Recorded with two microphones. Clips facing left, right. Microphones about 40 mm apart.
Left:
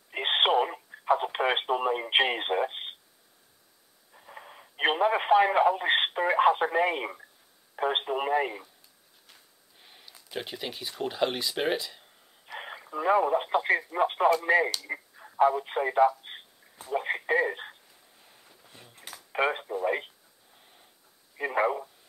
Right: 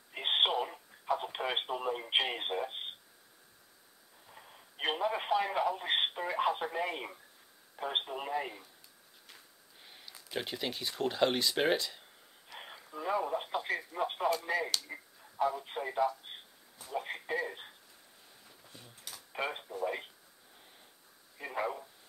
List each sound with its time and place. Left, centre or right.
0.1 s telephone: left
4.3 s speech: left
9.3 s a sound: centre
12.5 s speech: left
16.3 s radio: left
18.9 s a sound: left
21.4 s speech: left